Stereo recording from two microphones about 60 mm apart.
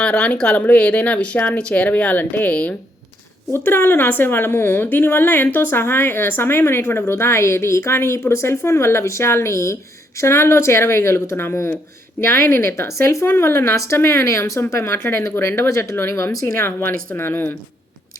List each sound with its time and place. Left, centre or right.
0.0 s speech: centre
3.5 s a woman's voice: left
12.9 s speech: left
16.3 s speech: left
17.2 s a woman's voice: left